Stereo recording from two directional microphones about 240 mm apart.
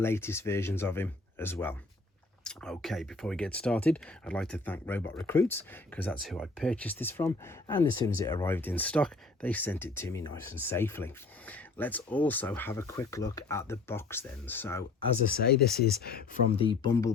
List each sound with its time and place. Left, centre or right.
0.0 s speech: centre
15.3 s speech: left
16.5 s speech: left